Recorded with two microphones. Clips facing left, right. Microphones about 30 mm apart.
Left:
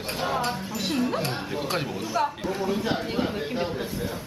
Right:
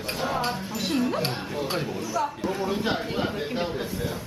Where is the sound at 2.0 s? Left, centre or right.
Left.